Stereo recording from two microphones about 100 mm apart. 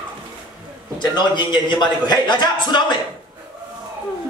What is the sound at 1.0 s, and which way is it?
A man's voice, 50° left (ahead or behind).